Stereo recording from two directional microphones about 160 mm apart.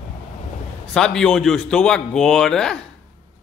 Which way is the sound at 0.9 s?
5° left (ahead or behind).